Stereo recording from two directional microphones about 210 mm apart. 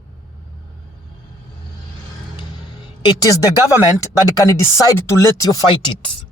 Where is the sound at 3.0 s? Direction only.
15° left (ahead or behind).